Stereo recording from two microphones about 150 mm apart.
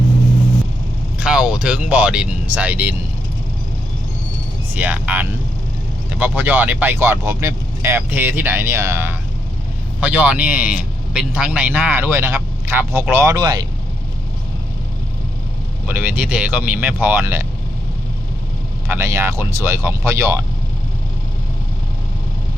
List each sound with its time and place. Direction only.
1.2 s speech: 5° right (ahead or behind)
4.7 s a man's voice: 10° right (ahead or behind)
15.9 s a man's voice: 10° right (ahead or behind)
18.9 s speech: 20° right (ahead or behind)